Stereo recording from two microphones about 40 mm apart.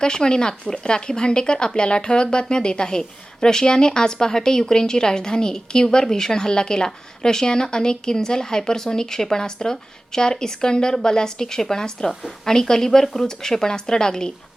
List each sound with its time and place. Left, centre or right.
0.0 s speech: centre